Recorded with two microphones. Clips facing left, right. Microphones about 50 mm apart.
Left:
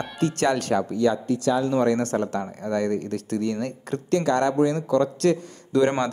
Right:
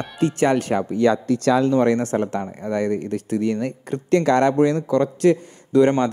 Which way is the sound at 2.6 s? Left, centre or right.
Centre.